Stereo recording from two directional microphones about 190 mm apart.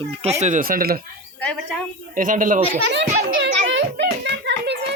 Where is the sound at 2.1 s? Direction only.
45° right (ahead or behind).